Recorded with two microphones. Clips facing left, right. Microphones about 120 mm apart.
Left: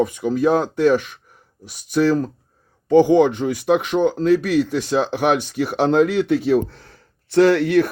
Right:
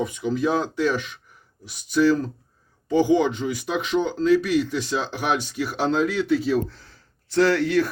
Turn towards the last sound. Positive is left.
turn(degrees=65)  # may be behind; listen again after turning